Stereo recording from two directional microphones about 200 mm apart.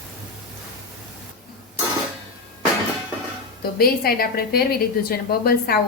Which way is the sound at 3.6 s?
50° left (ahead or behind).